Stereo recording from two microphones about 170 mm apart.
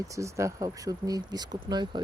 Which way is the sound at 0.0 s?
20° right (ahead or behind).